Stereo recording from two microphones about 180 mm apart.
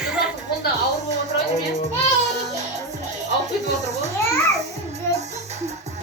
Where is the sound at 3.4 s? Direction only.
40° right (ahead or behind).